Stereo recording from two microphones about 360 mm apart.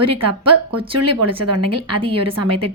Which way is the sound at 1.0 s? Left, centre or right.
Right.